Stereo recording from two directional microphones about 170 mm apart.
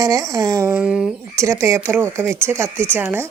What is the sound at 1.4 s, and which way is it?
Speech, 15° right (ahead or behind).